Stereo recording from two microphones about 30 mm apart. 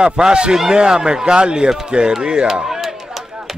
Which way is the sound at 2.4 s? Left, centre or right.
Centre.